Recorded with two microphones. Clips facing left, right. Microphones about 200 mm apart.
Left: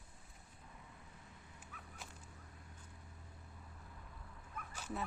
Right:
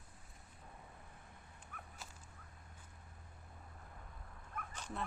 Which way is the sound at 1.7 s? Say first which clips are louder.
Right 4 dB; 55° right (ahead or behind).